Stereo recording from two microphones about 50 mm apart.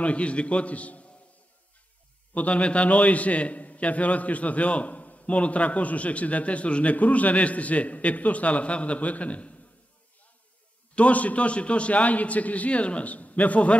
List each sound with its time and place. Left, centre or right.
0.0 s a man's voice: left
2.3 s a man's voice: left
11.0 s a man's voice: left